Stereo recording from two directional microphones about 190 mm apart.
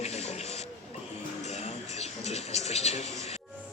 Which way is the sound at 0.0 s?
35° left (ahead or behind).